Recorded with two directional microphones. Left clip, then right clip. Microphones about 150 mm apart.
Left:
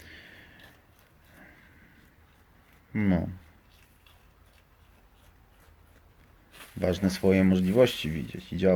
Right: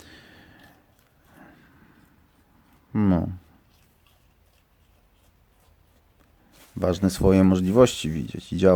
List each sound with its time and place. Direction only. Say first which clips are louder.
0.0 s a sound: even; 40° right (ahead or behind)
2.9 s speech: right 5 dB; 40° right (ahead or behind)
6.7 s speech: right 4 dB; 40° right (ahead or behind)